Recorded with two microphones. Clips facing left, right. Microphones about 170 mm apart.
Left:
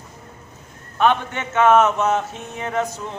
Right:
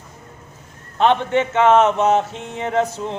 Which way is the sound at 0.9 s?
25° right (ahead or behind).